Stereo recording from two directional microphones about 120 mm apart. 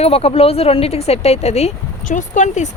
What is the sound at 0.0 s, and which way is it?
Speech, 55° left (ahead or behind).